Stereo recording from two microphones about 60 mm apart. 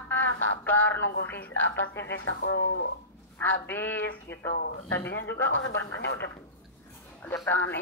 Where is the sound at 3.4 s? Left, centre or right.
Left.